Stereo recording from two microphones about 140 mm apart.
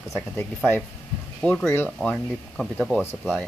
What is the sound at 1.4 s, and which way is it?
Speech, 15° left (ahead or behind).